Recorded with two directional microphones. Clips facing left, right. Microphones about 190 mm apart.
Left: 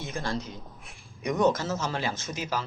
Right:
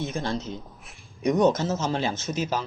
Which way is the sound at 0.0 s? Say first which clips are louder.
Right 4 dB; 20° right (ahead or behind).